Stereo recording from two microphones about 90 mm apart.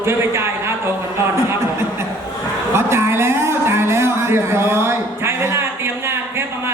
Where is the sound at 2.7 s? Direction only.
30° right (ahead or behind).